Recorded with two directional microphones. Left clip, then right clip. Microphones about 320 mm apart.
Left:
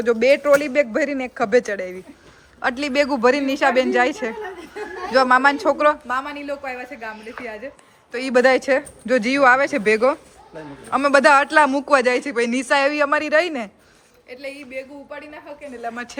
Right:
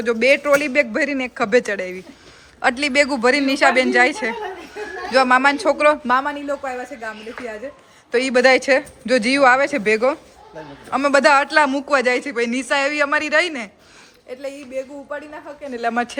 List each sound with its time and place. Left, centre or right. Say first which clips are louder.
0.0 s a man's voice: even; centre
6.1 s a woman's voice: right 6 dB; centre
6.5 s a man's voice: right 3 dB; centre
15.8 s speech: right 8 dB; right